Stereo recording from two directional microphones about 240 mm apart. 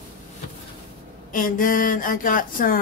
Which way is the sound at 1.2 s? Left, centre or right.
Left.